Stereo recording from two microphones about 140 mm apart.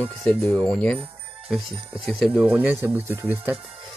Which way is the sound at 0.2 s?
Centre (ahead or behind).